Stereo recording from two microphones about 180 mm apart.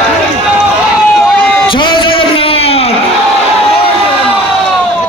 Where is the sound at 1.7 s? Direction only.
25° left (ahead or behind).